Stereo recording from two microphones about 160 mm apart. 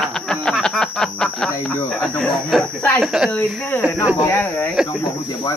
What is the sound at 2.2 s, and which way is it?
Speech, 5° left (ahead or behind).